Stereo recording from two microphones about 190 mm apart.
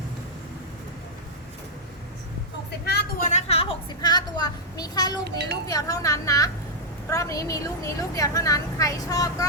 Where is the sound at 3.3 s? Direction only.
35° left (ahead or behind).